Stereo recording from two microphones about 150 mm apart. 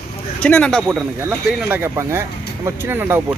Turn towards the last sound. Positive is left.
turn(degrees=-15)  # may be behind; listen again after turning